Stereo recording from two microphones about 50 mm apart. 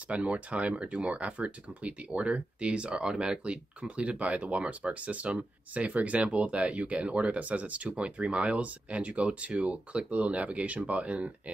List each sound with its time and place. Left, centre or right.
0.1 s speech: right